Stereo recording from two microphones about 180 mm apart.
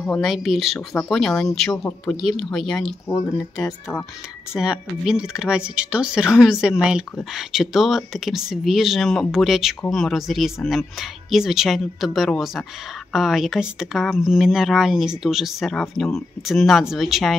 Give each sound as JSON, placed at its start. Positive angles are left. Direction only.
{"t": 0.0, "sound": "speech", "side_deg": 5}
{"t": 0.7, "sound": "speech", "side_deg": 10}
{"t": 3.1, "sound": "speech", "side_deg": 20}
{"t": 4.6, "sound": "speech", "side_deg": -5}